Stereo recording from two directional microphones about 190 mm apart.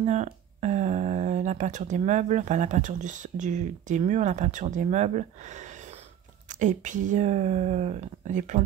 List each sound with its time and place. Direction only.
0.0 s speech: 35° right (ahead or behind)